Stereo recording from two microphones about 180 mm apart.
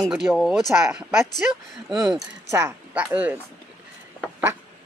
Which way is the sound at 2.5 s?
15° right (ahead or behind).